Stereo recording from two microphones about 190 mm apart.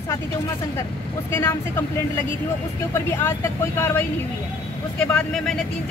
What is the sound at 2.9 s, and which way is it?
Speech, 15° left (ahead or behind).